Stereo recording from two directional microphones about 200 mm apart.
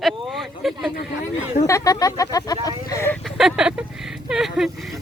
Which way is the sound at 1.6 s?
15° left (ahead or behind).